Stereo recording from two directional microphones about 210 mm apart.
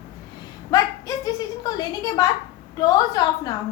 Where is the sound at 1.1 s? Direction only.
15° left (ahead or behind).